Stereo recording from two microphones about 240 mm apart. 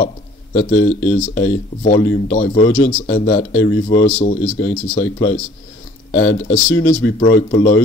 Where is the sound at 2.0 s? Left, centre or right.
Left.